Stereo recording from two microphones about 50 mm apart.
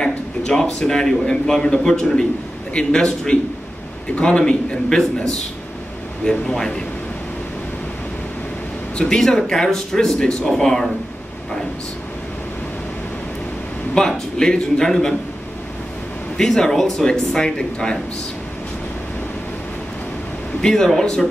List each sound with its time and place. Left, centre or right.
0.0 s a man's voice: centre
8.9 s speech: centre
13.9 s speech: centre
16.3 s speech: centre
20.6 s speech: centre